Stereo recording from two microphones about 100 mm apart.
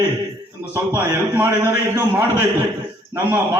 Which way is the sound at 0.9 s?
20° right (ahead or behind).